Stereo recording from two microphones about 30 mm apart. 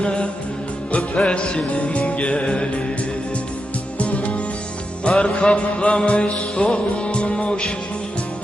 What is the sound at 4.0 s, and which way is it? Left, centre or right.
Music, left.